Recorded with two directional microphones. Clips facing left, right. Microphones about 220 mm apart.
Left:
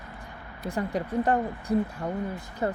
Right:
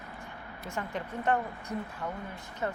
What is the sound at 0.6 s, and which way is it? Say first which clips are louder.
Speech: left 7 dB; 35° left (ahead or behind).